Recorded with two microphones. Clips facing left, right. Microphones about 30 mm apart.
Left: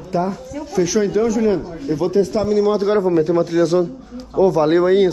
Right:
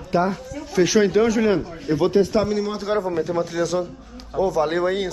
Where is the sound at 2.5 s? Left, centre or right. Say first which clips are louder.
Left 9 dB; centre.